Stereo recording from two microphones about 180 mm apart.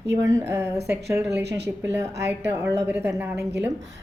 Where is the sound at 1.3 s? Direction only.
70° right (ahead or behind).